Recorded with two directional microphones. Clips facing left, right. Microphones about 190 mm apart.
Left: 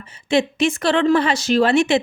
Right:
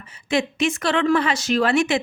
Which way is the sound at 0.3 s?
30° left (ahead or behind).